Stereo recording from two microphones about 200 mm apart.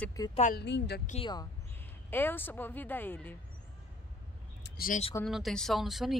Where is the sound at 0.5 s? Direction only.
60° left (ahead or behind).